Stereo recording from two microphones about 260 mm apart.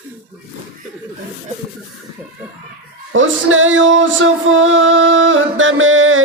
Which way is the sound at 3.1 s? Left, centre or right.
Right.